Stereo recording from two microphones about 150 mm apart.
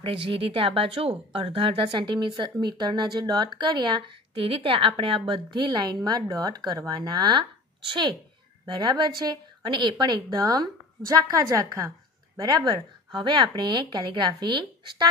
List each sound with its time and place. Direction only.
0.0 s a woman's voice: 35° right (ahead or behind)